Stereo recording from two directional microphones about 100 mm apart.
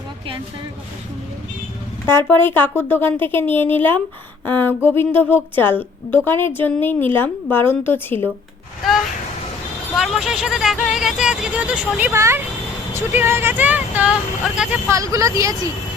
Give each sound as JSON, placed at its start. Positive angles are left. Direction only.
{"t": 2.3, "sound": "speech", "side_deg": 20}
{"t": 9.9, "sound": "speech", "side_deg": 0}
{"t": 12.1, "sound": "speech", "side_deg": -30}
{"t": 14.8, "sound": "speech", "side_deg": -35}